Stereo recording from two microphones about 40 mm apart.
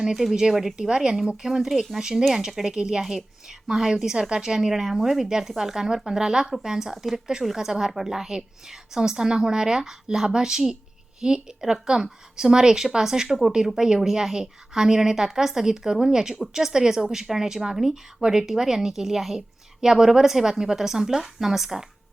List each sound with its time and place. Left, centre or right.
0.0 s a woman's voice: centre
0.9 s a woman's voice: centre
6.9 s a woman's voice: centre